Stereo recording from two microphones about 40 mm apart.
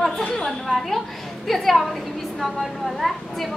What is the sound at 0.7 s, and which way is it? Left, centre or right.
A woman's voice, centre.